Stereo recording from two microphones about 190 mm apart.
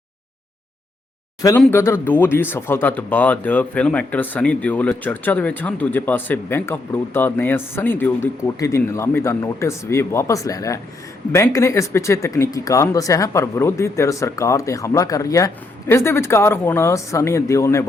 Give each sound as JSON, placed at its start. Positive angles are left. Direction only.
{"t": 1.4, "sound": "speech", "side_deg": 15}